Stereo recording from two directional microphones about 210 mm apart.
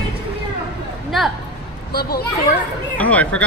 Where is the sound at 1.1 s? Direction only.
Centre (ahead or behind).